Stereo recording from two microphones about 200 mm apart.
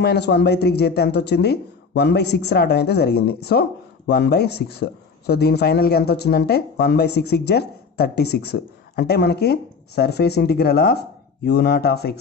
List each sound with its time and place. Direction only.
0.0 s speech: 55° left (ahead or behind)